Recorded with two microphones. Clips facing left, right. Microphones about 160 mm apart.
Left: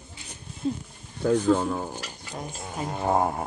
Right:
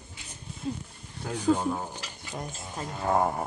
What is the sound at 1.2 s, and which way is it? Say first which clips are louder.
Speech: left 5 dB; 70° left (ahead or behind).